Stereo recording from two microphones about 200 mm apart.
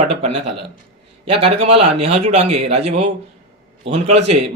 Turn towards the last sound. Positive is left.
turn(degrees=-30)  # may be behind; listen again after turning